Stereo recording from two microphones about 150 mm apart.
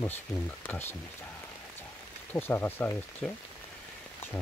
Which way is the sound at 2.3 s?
15° left (ahead or behind).